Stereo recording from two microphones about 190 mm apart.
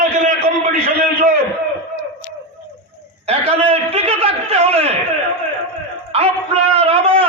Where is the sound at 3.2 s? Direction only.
30° right (ahead or behind).